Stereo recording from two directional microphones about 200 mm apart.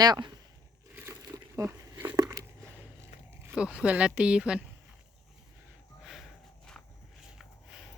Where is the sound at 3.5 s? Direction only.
5° right (ahead or behind).